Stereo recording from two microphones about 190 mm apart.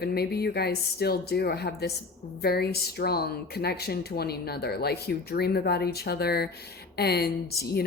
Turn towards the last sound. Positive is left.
turn(degrees=55)  # may be behind; listen again after turning